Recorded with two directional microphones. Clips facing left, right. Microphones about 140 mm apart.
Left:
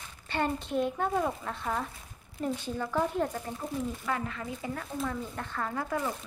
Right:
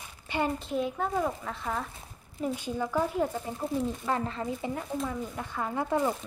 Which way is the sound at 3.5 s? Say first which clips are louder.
Right 4 dB; 30° right (ahead or behind).